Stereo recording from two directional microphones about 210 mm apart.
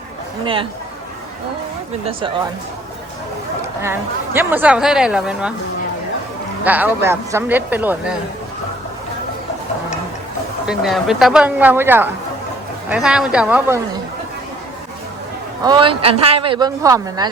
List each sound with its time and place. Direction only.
0.4 s a woman's voice: 25° right (ahead or behind)
3.8 s a woman's voice: 10° right (ahead or behind)
6.7 s speech: 10° right (ahead or behind)
10.7 s a woman's voice: centre (ahead or behind)
15.6 s a woman's voice: 20° right (ahead or behind)